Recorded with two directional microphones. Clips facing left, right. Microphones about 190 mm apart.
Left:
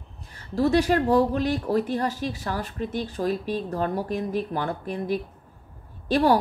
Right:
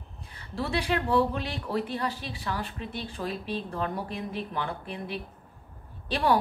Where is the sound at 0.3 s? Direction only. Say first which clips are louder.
Left 10 dB; 40° left (ahead or behind).